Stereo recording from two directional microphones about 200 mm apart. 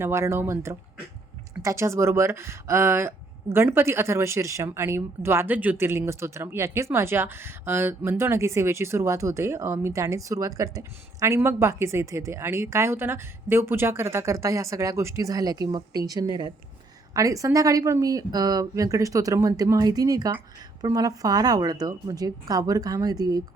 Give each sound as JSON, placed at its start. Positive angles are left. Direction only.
{"t": 0.0, "sound": "a woman's voice", "side_deg": -15}